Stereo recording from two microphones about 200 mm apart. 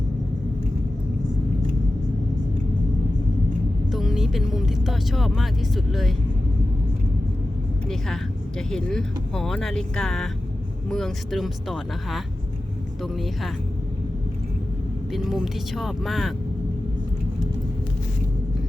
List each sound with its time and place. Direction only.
3.9 s speech: centre (ahead or behind)
7.9 s speech: centre (ahead or behind)
15.1 s speech: centre (ahead or behind)